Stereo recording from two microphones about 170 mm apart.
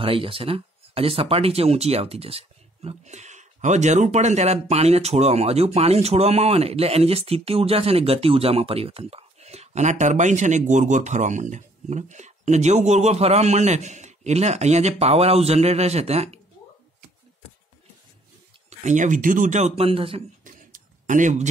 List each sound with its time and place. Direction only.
0.0 s speech: 30° right (ahead or behind)
18.7 s speech: 45° right (ahead or behind)
20.4 s a sound: 50° right (ahead or behind)